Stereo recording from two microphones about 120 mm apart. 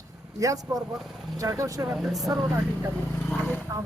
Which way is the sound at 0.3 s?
30° right (ahead or behind).